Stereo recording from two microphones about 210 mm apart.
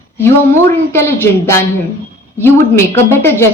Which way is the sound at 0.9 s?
10° left (ahead or behind).